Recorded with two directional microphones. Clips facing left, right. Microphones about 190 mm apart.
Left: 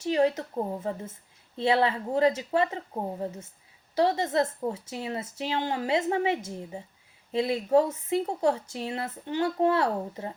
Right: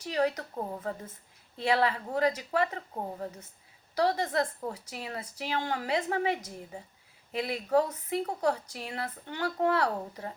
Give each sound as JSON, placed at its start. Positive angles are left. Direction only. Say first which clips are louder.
{"t": 0.0, "sound": "a woman's voice", "louder": "left 5 dB", "side_deg": 25}